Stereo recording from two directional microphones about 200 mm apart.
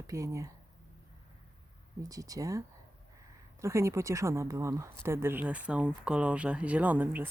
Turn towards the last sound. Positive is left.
turn(degrees=-10)  # may be behind; listen again after turning